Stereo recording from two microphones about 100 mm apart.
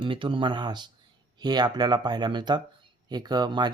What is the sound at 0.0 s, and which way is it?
Speech, 55° right (ahead or behind).